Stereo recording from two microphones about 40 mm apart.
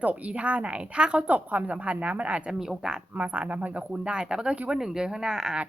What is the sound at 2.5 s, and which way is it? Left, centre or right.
Speech, centre.